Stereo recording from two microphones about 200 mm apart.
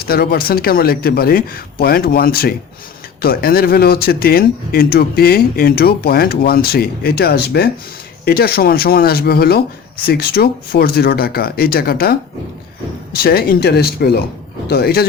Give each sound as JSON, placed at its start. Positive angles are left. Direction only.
{"t": 0.0, "sound": "speech", "side_deg": 50}
{"t": 13.2, "sound": "speech", "side_deg": 50}